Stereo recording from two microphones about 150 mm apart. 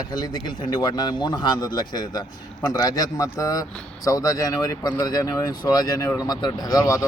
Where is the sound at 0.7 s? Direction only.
25° left (ahead or behind).